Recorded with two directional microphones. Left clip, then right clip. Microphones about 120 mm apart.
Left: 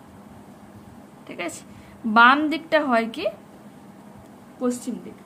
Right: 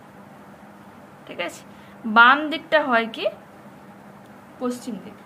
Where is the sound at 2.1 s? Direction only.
55° left (ahead or behind).